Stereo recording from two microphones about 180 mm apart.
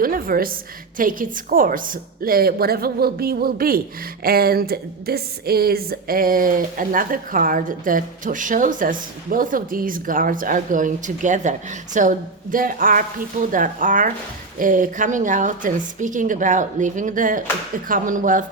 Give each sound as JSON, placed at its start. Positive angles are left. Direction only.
{"t": 0.0, "sound": "a woman's voice", "side_deg": -55}